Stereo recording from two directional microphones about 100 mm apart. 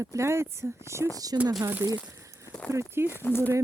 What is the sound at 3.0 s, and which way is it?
Speech, 25° left (ahead or behind).